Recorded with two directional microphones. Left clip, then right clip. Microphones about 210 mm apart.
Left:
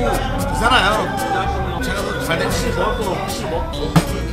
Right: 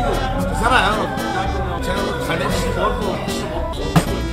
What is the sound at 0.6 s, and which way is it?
Speech, 20° left (ahead or behind).